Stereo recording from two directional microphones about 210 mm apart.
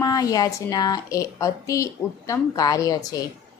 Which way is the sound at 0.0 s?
15° left (ahead or behind).